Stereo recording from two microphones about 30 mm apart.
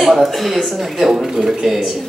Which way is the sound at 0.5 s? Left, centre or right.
Centre.